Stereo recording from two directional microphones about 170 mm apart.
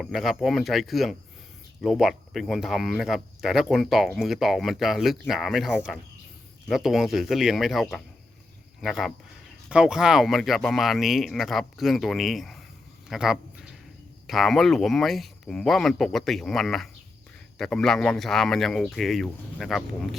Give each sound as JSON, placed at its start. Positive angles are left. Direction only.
{"t": 0.0, "sound": "speech", "side_deg": 0}
{"t": 13.1, "sound": "a sound", "side_deg": 0}
{"t": 14.3, "sound": "speech", "side_deg": 0}